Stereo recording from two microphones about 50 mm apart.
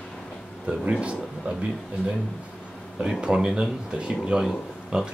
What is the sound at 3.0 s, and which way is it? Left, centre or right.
Speech, centre.